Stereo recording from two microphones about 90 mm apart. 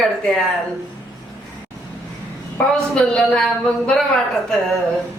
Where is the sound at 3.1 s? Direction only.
5° left (ahead or behind).